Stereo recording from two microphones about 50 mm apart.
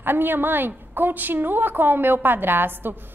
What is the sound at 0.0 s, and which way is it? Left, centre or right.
A woman's voice, right.